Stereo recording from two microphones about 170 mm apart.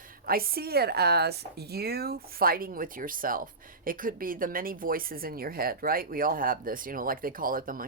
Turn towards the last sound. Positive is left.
turn(degrees=-55)  # may be behind; listen again after turning